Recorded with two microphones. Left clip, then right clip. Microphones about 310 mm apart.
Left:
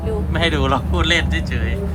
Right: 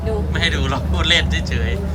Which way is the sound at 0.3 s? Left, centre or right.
Centre.